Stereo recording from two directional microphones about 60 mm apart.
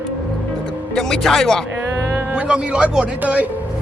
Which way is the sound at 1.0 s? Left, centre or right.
Centre.